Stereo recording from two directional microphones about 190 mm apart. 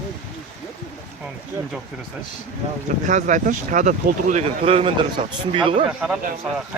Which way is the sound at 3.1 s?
40° right (ahead or behind).